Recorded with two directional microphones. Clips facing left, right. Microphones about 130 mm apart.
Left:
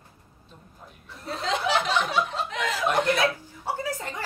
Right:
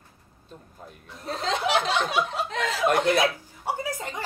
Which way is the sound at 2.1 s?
15° right (ahead or behind).